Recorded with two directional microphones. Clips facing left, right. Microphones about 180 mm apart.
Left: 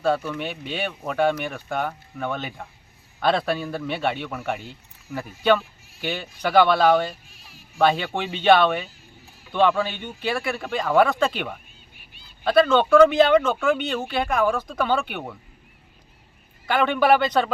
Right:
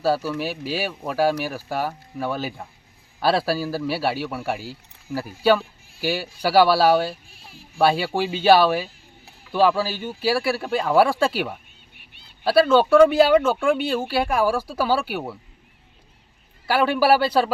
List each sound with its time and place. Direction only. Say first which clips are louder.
0.0 s speech: right 1 dB; 5° right (ahead or behind)
11.9 s a sound: left 1 dB; 65° right (ahead or behind)
12.5 s speech: right 1 dB; 10° right (ahead or behind)
16.6 s speech: right 1 dB; 5° right (ahead or behind)